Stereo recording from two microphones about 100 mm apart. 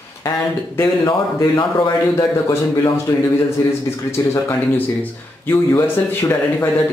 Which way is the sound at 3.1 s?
35° left (ahead or behind).